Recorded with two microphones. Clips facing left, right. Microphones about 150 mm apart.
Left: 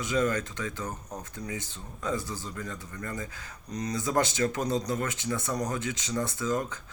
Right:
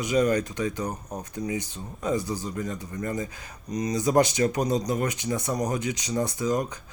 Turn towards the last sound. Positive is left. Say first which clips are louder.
# right 4 dB
turn(degrees=-15)  # may be behind; listen again after turning